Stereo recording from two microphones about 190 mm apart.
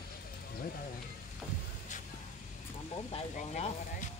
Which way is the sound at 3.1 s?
35° left (ahead or behind).